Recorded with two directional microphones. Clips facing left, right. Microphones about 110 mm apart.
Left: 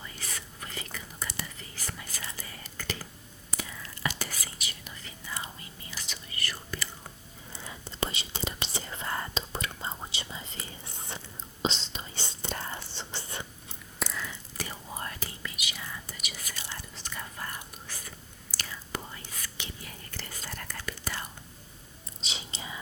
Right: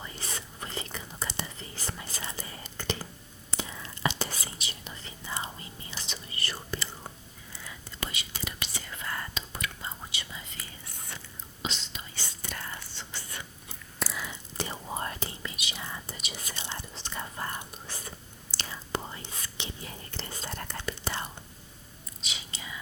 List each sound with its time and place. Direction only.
0.0 s whispering: 30° right (ahead or behind)
7.5 s whispering: 30° left (ahead or behind)
14.0 s whispering: 5° right (ahead or behind)
14.3 s whispering: 25° right (ahead or behind)
22.2 s whispering: 30° left (ahead or behind)